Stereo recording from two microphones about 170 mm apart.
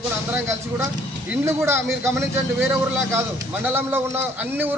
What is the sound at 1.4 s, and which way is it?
Speech, 15° right (ahead or behind).